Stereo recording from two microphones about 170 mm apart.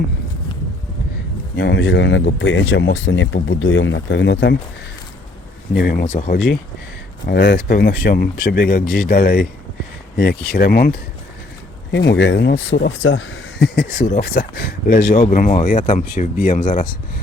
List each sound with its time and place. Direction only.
1.5 s speech: 90° left
5.7 s speech: 65° left (ahead or behind)
6.1 s speech: 45° left (ahead or behind)
7.3 s speech: 65° left (ahead or behind)
10.5 s speech: 65° left (ahead or behind)
11.9 s speech: 90° left; by 16.8 s 50° left (ahead or behind)